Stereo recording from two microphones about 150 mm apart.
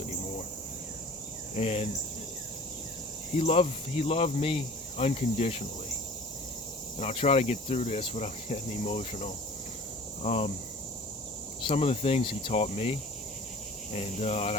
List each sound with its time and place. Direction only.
1.5 s cricket: 45° left (ahead or behind)
3.3 s speech: 40° left (ahead or behind)
7.0 s cricket: 40° left (ahead or behind)
11.7 s speech: 40° left (ahead or behind)
13.9 s cricket: 45° left (ahead or behind)